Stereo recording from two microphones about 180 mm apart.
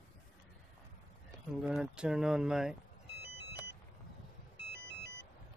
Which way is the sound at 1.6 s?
Centre (ahead or behind).